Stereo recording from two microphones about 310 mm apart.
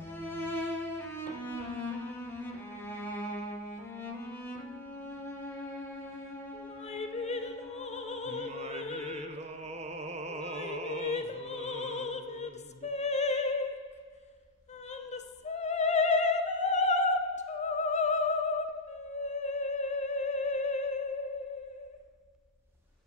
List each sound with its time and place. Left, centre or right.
0.1 s cello: centre
4.0 s music: centre
6.9 s opera: left
9.0 s music: right
11.1 s opera: left
14.9 s opera: left
19.2 s music: left